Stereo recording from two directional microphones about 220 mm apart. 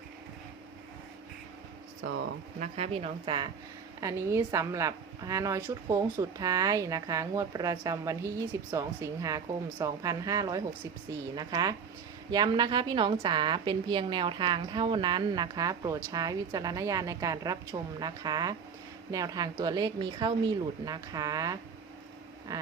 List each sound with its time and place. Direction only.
2.6 s a woman's voice: 30° right (ahead or behind)